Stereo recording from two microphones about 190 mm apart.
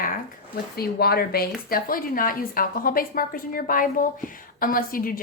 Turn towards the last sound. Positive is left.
turn(degrees=50)  # may be behind; listen again after turning